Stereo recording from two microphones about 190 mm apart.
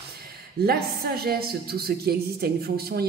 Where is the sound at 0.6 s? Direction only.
55° right (ahead or behind).